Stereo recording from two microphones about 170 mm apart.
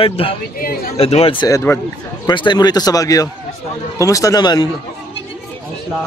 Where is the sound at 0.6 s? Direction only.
60° left (ahead or behind).